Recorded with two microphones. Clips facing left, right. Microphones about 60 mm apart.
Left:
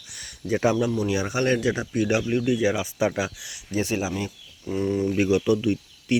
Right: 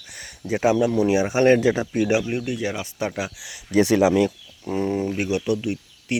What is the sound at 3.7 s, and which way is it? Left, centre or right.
Speech, right.